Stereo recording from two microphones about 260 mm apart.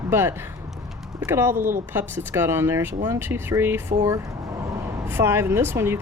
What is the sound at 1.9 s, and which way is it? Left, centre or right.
Speech, centre.